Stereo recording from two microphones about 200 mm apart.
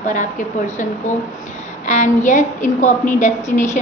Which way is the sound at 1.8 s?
35° left (ahead or behind).